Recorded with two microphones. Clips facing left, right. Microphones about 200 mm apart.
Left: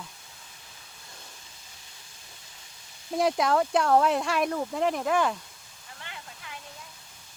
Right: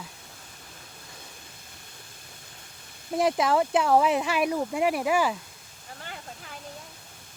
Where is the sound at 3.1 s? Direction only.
Centre (ahead or behind).